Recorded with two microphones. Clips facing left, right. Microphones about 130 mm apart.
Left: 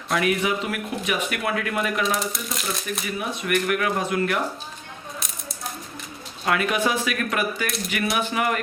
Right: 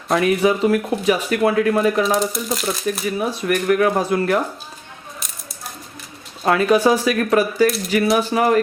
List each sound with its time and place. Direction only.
0.1 s speech: 30° right (ahead or behind)
2.1 s speech: centre (ahead or behind)
3.2 s speech: 35° right (ahead or behind)
6.4 s speech: 35° right (ahead or behind)